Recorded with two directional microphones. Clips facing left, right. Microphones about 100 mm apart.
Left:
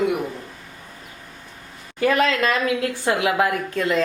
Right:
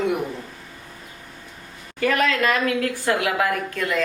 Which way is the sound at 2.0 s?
20° left (ahead or behind).